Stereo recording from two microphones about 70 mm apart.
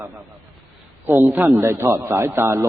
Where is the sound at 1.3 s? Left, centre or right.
Right.